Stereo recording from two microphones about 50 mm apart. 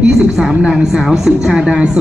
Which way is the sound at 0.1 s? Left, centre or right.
Centre.